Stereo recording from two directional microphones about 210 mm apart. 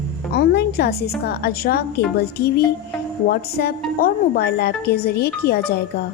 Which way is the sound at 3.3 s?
50° left (ahead or behind).